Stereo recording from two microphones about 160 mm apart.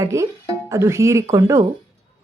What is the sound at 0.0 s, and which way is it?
Speech, 20° right (ahead or behind).